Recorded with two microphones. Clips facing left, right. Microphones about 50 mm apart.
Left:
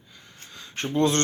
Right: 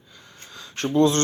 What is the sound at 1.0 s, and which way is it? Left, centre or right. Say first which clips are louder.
Speech: right 3 dB; left.